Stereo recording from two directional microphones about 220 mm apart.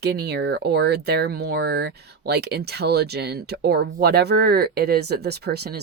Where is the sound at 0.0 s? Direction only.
50° right (ahead or behind).